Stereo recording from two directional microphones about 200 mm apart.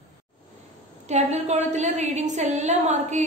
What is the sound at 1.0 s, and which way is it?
A woman's voice, 35° right (ahead or behind).